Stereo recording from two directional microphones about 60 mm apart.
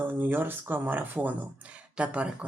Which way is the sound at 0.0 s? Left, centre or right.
Right.